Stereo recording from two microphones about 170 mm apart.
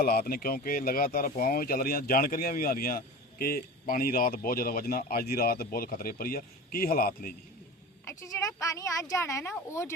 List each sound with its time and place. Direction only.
0.0 s speech: 65° left (ahead or behind)
8.0 s a woman's voice: 20° left (ahead or behind)